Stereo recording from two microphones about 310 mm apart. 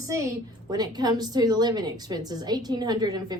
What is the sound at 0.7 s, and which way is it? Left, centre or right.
A woman's voice, centre.